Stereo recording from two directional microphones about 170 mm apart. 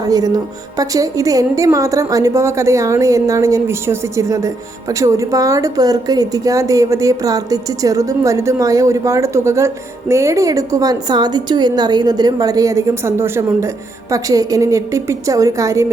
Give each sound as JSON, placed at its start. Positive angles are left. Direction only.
{"t": 0.0, "sound": "a woman's voice", "side_deg": -20}